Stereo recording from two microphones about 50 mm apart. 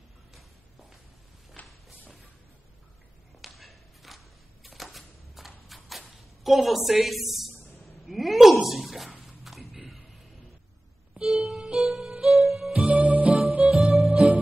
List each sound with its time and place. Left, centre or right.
1.6 s walk: left
3.3 s a sound: centre
6.4 s a woman's voice: centre
8.0 s a sound: centre
9.2 s music: centre
11.4 s music: centre
12.4 s music: centre
12.7 s music: right